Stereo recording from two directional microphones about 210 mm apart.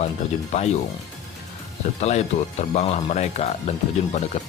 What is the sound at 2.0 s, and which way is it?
Speech, 35° left (ahead or behind).